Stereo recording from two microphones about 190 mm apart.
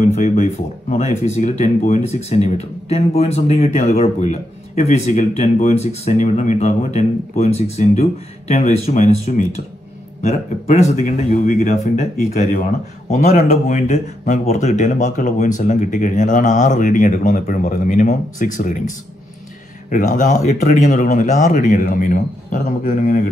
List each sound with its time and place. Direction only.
0.0 s speech: 40° left (ahead or behind)